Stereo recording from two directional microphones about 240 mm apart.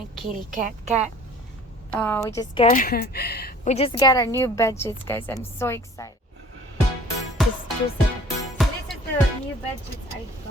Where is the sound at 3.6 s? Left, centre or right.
Left.